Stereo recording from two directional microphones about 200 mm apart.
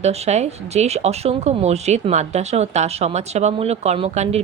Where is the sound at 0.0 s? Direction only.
35° right (ahead or behind).